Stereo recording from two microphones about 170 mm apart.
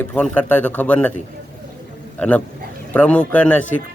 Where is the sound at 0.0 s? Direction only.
10° left (ahead or behind).